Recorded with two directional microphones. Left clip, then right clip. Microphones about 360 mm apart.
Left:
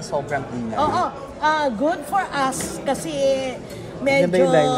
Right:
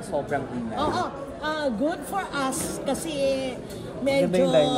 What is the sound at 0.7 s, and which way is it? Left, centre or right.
A man's voice, centre.